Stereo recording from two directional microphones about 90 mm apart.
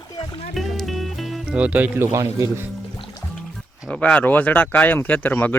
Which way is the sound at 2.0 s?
30° right (ahead or behind).